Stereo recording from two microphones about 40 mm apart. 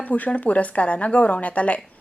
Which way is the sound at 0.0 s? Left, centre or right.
Left.